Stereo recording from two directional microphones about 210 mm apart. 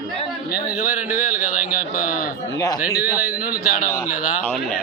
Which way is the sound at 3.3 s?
45° left (ahead or behind).